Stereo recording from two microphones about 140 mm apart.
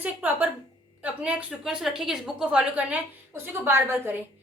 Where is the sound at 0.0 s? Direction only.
10° right (ahead or behind).